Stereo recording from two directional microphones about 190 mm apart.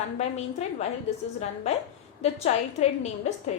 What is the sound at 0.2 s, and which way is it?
Speech, 35° left (ahead or behind).